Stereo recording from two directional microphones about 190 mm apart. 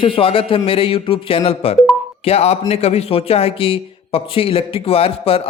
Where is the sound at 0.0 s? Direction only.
30° left (ahead or behind).